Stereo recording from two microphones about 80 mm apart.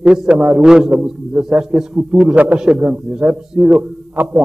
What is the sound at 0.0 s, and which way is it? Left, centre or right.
Speech, centre.